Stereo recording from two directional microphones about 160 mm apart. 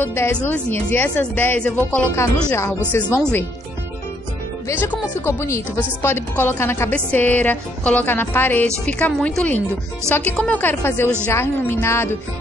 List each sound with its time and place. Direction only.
0.0 s speech: 15° left (ahead or behind)
4.6 s speech: 15° left (ahead or behind)